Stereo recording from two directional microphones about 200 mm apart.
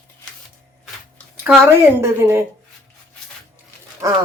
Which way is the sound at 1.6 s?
10° right (ahead or behind).